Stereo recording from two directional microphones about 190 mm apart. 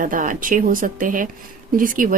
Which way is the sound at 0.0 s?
45° right (ahead or behind).